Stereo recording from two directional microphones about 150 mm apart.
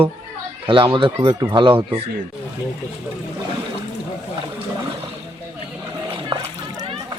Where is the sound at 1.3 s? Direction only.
25° right (ahead or behind).